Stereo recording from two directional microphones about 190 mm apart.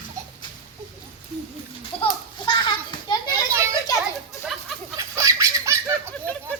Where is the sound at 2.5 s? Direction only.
25° left (ahead or behind).